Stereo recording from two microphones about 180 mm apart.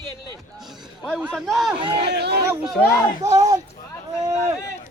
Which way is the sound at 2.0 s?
65° right (ahead or behind).